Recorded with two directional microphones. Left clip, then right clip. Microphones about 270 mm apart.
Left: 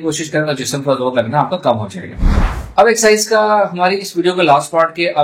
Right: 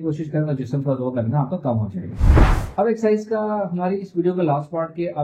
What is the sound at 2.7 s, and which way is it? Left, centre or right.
Speech, centre.